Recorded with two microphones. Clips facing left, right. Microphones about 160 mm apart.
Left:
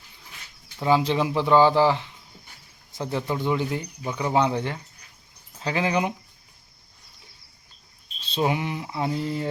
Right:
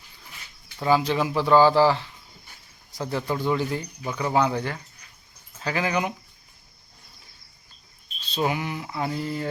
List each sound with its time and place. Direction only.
0.8 s speech: 20° left (ahead or behind)
8.2 s speech: 25° left (ahead or behind)